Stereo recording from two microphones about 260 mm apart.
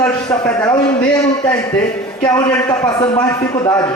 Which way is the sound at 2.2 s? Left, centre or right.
Centre.